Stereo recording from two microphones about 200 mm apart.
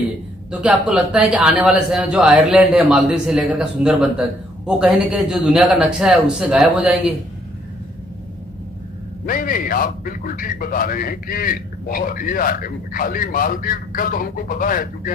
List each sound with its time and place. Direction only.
0.5 s a man's voice: 5° right (ahead or behind)
9.2 s a man's voice: 45° left (ahead or behind)